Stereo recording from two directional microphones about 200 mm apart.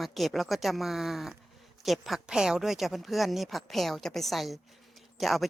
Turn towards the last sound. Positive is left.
turn(degrees=0)  # may be behind; listen again after turning